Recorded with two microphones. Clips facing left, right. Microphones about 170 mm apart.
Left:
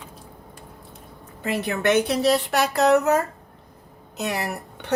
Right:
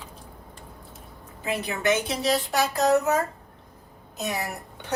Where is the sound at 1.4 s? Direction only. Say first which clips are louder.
Left 3 dB; 60° left (ahead or behind).